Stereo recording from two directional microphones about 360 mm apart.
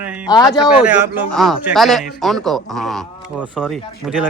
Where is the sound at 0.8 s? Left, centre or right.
Centre.